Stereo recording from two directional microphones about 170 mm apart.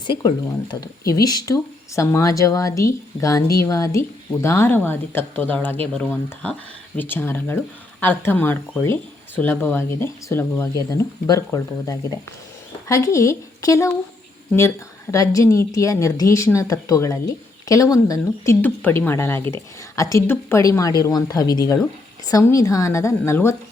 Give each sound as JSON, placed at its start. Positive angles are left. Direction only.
{"t": 0.1, "sound": "a woman's voice", "side_deg": 25}
{"t": 15.1, "sound": "a woman's voice", "side_deg": 20}